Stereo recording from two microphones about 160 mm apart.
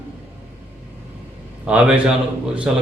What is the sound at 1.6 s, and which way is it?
Speech, 5° right (ahead or behind).